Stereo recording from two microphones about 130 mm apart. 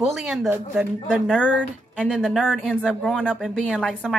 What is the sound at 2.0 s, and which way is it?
A woman's voice, 5° right (ahead or behind).